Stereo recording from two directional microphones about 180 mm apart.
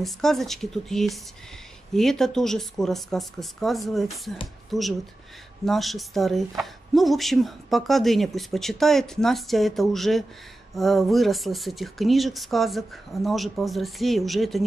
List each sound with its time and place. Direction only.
0.0 s speech: centre (ahead or behind)